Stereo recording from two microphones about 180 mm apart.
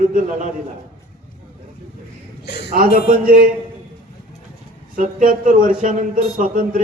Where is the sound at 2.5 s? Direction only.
65° left (ahead or behind).